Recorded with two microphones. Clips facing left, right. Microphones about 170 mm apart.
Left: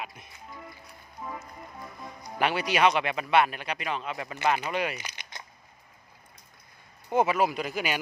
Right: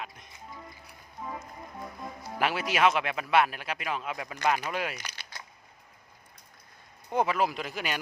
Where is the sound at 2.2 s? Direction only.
Centre (ahead or behind).